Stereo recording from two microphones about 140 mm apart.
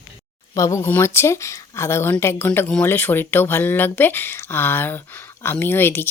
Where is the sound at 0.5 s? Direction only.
20° left (ahead or behind).